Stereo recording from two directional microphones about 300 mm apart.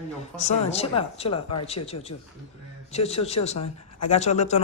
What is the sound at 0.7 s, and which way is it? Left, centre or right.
Speech, centre.